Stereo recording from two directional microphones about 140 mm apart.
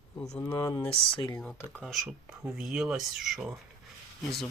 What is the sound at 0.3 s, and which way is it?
Speech, 15° left (ahead or behind).